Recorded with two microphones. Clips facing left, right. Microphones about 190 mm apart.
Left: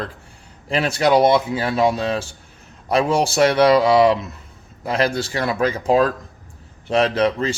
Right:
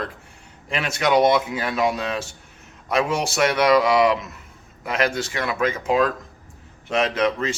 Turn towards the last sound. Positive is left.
turn(degrees=35)  # may be behind; listen again after turning